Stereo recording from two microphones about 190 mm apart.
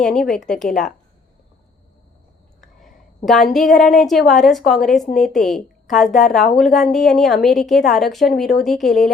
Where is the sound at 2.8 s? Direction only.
Centre (ahead or behind).